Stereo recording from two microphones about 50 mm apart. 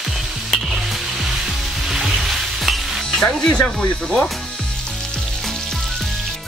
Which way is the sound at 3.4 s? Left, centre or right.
Left.